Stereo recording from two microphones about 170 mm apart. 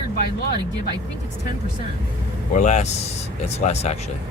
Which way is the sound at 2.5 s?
45° left (ahead or behind).